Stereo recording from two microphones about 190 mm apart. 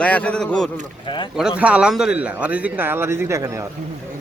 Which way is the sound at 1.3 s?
5° right (ahead or behind).